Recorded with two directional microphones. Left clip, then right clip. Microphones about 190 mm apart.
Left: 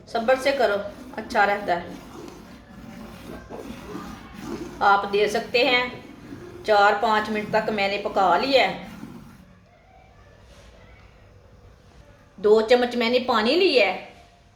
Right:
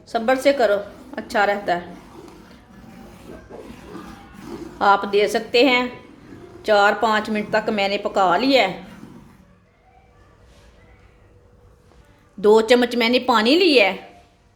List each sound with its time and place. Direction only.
0.0 s a woman's voice: 55° right (ahead or behind)
4.8 s a woman's voice: 55° right (ahead or behind)
12.4 s a woman's voice: 55° right (ahead or behind)